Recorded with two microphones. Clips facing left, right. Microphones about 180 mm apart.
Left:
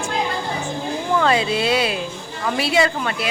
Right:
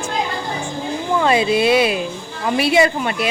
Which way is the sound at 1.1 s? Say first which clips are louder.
Right 3 dB; 15° right (ahead or behind).